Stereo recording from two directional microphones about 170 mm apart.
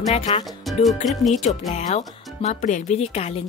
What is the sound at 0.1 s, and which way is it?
Speech, 40° left (ahead or behind).